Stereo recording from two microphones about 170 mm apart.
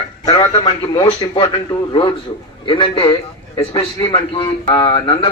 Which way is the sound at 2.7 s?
30° left (ahead or behind).